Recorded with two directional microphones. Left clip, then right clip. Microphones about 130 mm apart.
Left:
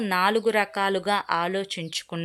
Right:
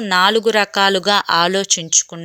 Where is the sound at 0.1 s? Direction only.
25° right (ahead or behind).